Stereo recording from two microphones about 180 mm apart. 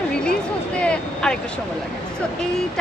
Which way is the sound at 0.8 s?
5° left (ahead or behind).